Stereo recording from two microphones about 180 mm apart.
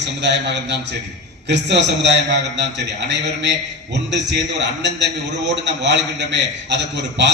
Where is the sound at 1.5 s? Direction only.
75° right (ahead or behind).